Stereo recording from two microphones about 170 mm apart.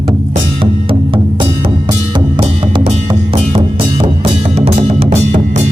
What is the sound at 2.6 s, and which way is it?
Music, 35° right (ahead or behind).